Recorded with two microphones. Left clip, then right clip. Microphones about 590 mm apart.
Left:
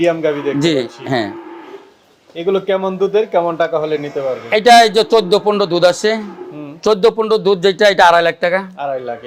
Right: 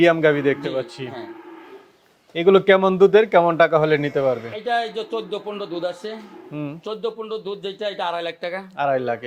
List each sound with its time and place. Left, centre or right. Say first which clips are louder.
0.0 s speech: left 1 dB; right
2.3 s a man's voice: right 2 dB; right
4.5 s speech: left 16 dB; left
8.8 s speech: even; right